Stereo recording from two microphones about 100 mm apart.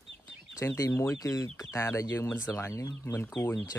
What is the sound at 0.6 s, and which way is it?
Speech, 25° left (ahead or behind).